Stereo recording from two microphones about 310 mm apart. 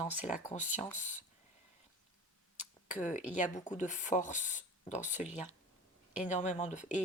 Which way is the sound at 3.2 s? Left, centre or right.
Left.